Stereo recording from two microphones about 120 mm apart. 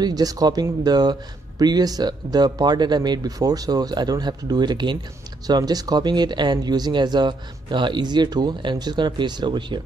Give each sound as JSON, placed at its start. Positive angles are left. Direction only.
{"t": 0.0, "sound": "speech", "side_deg": -30}